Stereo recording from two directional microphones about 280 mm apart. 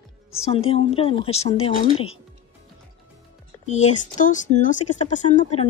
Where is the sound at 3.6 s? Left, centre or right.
Left.